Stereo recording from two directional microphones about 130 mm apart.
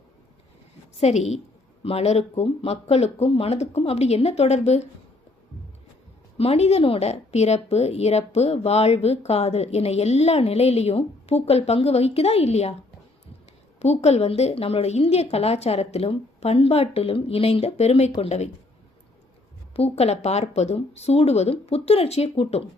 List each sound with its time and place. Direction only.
0.9 s a woman's voice: 60° left (ahead or behind)
6.3 s speech: 50° left (ahead or behind)
13.7 s a woman's voice: 55° left (ahead or behind)
19.7 s speech: 50° left (ahead or behind)